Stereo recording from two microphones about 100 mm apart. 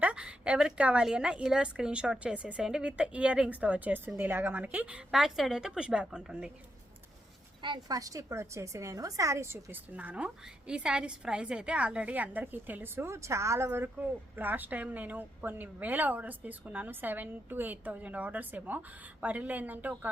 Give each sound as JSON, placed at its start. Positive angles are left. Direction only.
{"t": 0.0, "sound": "a woman's voice", "side_deg": -10}
{"t": 7.6, "sound": "a woman's voice", "side_deg": -50}
{"t": 7.9, "sound": "a woman's voice", "side_deg": -35}